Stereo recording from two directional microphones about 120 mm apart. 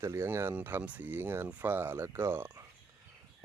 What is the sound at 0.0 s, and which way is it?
Speech, 20° right (ahead or behind).